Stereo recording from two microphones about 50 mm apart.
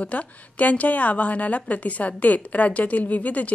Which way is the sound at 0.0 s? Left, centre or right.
Left.